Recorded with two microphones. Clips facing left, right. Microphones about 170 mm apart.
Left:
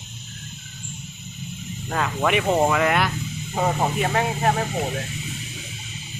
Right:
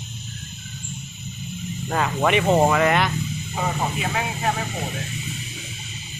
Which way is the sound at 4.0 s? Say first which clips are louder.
Left 4 dB; 45° left (ahead or behind).